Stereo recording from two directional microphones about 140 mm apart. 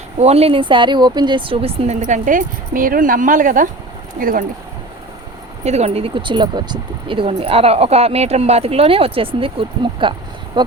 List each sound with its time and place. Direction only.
0.2 s speech: 50° right (ahead or behind)
2.0 s speech: 60° right (ahead or behind)
4.2 s speech: 85° right
5.6 s speech: 50° right (ahead or behind); by 10.6 s 35° right (ahead or behind)